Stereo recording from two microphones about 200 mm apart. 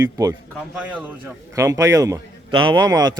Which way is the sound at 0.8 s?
5° right (ahead or behind).